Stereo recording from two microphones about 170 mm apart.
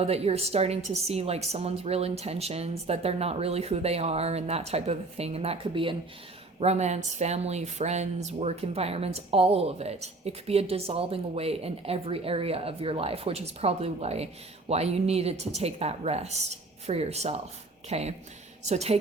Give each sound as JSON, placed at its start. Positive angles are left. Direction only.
{"t": 0.0, "sound": "speech", "side_deg": -35}